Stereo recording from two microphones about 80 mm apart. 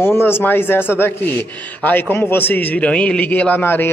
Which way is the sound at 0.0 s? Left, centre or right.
Left.